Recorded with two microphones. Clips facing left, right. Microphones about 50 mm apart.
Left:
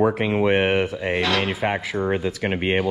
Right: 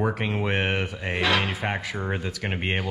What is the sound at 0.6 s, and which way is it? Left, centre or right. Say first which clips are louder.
Speech: left 6 dB; left.